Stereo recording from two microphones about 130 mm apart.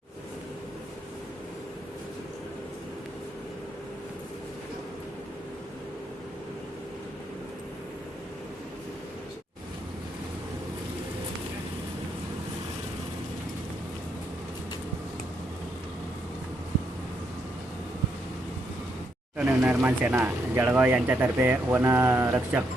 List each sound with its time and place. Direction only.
19.4 s speech: 15° right (ahead or behind)